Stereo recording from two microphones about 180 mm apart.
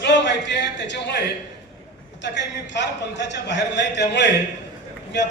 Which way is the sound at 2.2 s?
75° left (ahead or behind).